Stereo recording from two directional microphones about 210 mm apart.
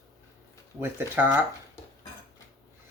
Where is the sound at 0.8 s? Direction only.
10° right (ahead or behind).